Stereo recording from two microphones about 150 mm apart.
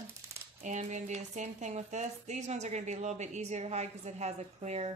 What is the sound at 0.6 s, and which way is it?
Speech, 55° right (ahead or behind).